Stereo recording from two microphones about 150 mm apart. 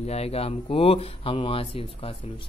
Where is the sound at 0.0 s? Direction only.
45° left (ahead or behind).